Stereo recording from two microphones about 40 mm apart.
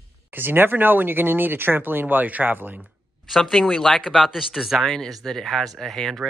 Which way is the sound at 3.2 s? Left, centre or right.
Centre.